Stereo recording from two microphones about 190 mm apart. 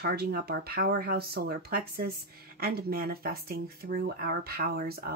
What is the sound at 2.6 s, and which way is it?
Speech, 50° right (ahead or behind).